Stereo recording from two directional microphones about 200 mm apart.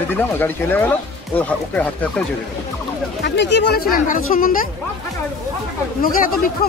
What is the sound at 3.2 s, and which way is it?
Speech, 60° left (ahead or behind).